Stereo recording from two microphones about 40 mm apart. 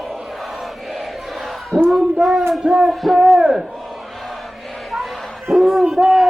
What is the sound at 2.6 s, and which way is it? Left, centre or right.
Music, centre.